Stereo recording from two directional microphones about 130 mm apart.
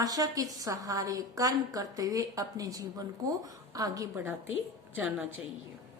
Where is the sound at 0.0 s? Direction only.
30° right (ahead or behind).